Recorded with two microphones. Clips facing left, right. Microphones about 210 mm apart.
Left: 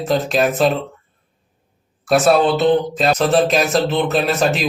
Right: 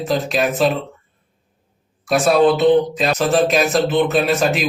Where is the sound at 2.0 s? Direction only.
Centre (ahead or behind).